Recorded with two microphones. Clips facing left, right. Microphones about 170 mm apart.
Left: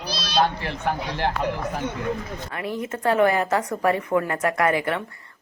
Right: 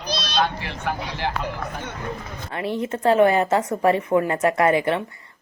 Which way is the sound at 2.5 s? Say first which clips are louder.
Right 4 dB; 30° right (ahead or behind).